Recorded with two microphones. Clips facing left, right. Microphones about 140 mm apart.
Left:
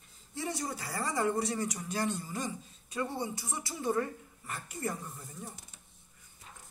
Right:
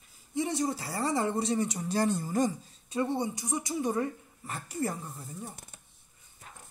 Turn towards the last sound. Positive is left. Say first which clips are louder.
# right 3 dB
turn(degrees=-30)  # may be behind; listen again after turning